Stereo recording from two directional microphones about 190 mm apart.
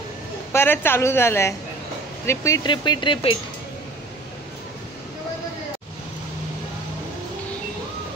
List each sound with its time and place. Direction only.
0.5 s a woman's voice: 10° left (ahead or behind)